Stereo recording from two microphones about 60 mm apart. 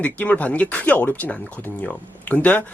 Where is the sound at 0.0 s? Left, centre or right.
Left.